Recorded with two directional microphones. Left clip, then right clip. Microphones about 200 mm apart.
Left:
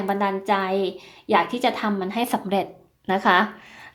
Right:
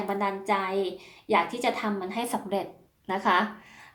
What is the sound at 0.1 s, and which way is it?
A woman's voice, 40° left (ahead or behind).